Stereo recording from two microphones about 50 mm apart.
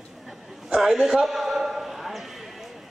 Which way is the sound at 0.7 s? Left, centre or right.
Centre.